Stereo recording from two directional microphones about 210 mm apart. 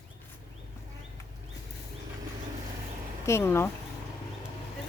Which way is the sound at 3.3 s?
10° left (ahead or behind).